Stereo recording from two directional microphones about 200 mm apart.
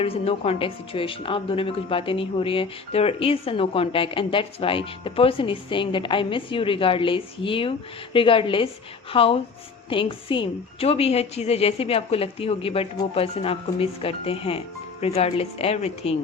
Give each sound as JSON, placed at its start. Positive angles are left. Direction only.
{"t": 0.0, "sound": "a woman's voice", "side_deg": 30}